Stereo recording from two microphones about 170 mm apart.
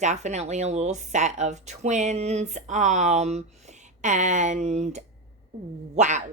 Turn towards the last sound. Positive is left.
turn(degrees=-45)  # may be behind; listen again after turning